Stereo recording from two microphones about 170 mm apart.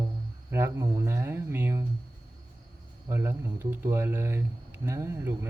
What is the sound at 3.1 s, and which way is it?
Speech, 15° right (ahead or behind).